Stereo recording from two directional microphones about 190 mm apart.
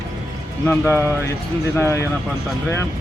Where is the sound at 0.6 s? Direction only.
15° left (ahead or behind).